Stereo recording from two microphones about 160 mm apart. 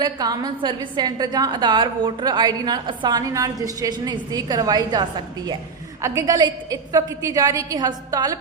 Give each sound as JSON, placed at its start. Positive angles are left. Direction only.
{"t": 0.0, "sound": "a woman's voice", "side_deg": -25}